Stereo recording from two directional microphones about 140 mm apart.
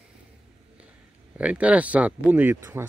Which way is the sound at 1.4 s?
10° right (ahead or behind).